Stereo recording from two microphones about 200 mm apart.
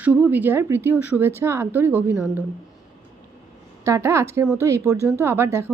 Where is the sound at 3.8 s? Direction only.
15° right (ahead or behind).